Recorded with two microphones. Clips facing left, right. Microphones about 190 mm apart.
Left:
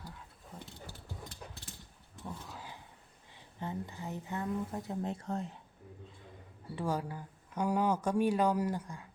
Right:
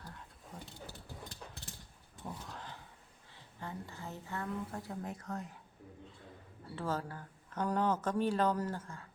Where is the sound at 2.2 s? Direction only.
5° left (ahead or behind).